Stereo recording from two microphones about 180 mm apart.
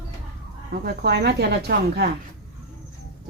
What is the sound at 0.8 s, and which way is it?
Speech, 65° right (ahead or behind).